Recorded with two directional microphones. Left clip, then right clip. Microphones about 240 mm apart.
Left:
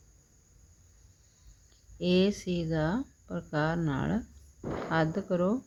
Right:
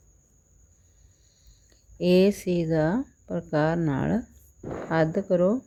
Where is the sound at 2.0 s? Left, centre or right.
Right.